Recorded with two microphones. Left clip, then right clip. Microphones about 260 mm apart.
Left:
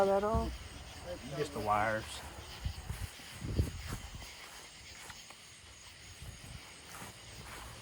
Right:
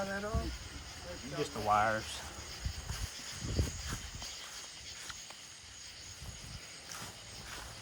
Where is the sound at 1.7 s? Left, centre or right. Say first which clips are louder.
Right 3 dB; centre.